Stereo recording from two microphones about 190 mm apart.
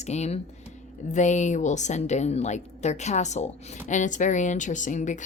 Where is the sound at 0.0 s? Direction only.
35° left (ahead or behind).